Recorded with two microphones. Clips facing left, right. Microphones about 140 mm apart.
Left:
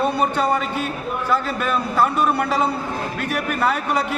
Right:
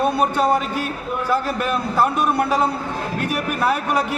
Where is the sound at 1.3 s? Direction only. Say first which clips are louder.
Even; 10° right (ahead or behind).